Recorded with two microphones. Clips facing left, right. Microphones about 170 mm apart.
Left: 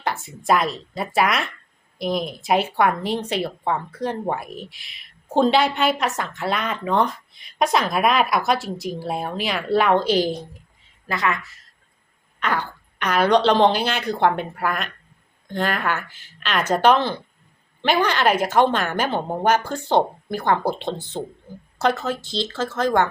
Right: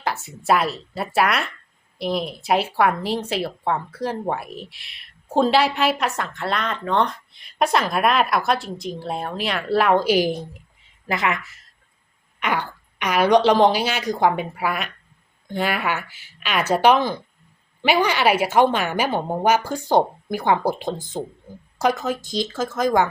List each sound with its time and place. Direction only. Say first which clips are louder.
0.0 s a woman's voice: even; centre (ahead or behind)
11.1 s a woman's voice: right 1 dB; 20° right (ahead or behind)